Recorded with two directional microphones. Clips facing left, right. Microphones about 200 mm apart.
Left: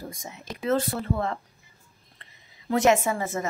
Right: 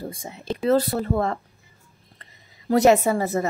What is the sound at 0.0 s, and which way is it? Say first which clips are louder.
A woman's voice: right 5 dB; 30° right (ahead or behind).